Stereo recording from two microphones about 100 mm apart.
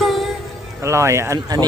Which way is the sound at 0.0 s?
Centre (ahead or behind).